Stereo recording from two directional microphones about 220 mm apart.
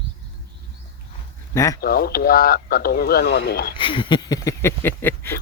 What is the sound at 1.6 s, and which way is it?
Speech, 15° left (ahead or behind).